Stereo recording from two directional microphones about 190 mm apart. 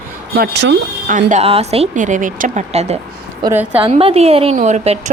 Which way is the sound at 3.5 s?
10° right (ahead or behind).